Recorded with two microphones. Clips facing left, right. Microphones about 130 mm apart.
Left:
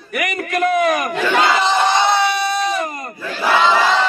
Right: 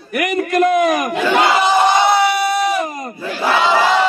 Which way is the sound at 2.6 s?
5° right (ahead or behind).